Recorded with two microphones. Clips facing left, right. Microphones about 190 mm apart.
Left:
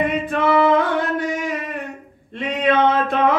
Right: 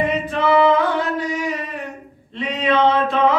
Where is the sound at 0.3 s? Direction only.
50° left (ahead or behind).